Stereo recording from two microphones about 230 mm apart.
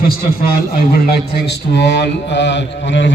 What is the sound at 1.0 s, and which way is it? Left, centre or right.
A man's voice, left.